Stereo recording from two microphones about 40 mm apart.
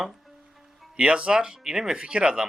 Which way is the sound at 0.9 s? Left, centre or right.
Right.